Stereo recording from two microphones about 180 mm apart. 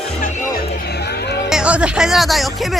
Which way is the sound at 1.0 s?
65° left (ahead or behind).